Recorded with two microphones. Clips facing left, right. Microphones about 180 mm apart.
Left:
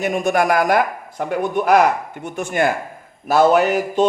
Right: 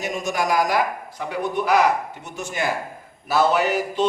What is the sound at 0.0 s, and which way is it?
A man's voice, 55° left (ahead or behind).